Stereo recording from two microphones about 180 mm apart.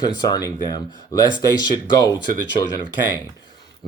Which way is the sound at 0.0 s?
20° left (ahead or behind).